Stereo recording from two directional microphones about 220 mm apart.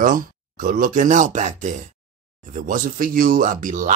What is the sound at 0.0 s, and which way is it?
Speech, 40° right (ahead or behind).